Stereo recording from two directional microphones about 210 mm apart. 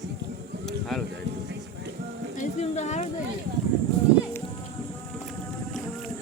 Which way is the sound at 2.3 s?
35° left (ahead or behind).